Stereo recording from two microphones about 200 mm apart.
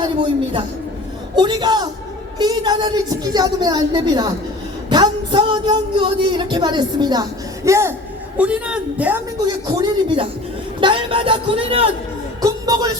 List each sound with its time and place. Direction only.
1.4 s speech: 20° right (ahead or behind)
9.6 s a man's voice: 20° right (ahead or behind)
12.4 s a sound: 20° right (ahead or behind)